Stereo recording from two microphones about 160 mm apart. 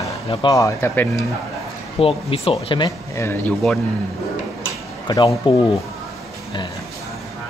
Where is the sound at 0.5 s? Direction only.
20° left (ahead or behind).